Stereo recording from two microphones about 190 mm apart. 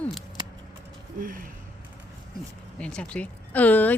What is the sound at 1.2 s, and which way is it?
Speech, 45° right (ahead or behind).